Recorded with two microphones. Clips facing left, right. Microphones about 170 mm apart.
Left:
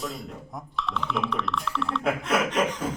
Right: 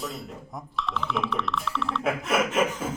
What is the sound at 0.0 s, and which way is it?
Speech, centre (ahead or behind).